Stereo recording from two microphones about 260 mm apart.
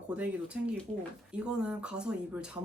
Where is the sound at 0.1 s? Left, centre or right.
Centre.